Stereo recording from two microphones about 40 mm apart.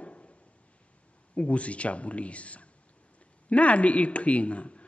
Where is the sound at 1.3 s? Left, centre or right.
Left.